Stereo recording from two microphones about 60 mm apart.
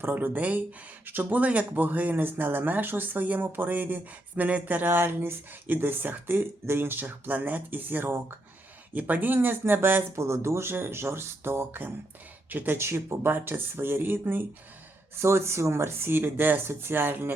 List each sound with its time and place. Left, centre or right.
0.0 s speech: right
10.2 s speech: right
15.2 s speech: right